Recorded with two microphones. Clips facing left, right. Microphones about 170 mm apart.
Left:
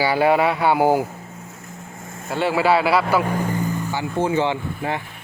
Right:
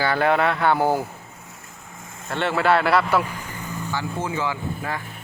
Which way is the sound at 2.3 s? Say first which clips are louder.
Left 2 dB; 5° left (ahead or behind).